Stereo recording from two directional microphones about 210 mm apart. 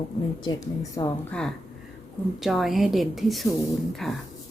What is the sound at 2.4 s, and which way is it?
A woman's voice, centre (ahead or behind).